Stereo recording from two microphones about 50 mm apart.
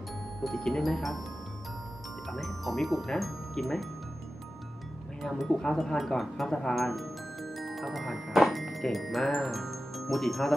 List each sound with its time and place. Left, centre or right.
0.4 s speech: centre
2.2 s speech: centre
5.2 s speech: centre
5.5 s speech: centre